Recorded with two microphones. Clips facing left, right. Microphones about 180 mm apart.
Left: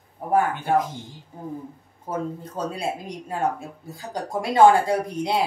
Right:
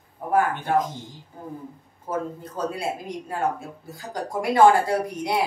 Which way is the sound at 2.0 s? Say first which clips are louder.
Even; 30° left (ahead or behind).